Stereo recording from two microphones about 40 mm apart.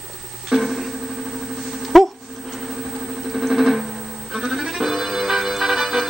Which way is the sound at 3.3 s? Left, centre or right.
Centre.